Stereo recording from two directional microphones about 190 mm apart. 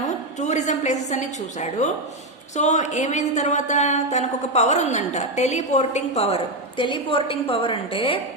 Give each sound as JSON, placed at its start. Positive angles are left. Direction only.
{"t": 0.3, "sound": "speech", "side_deg": 40}